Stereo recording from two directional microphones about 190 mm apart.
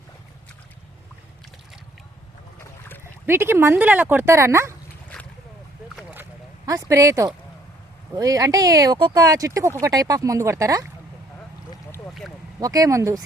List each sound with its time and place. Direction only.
3.0 s speech: 10° right (ahead or behind)
6.0 s a sound: 5° right (ahead or behind)
6.7 s speech: 15° right (ahead or behind)
12.5 s speech: 20° right (ahead or behind)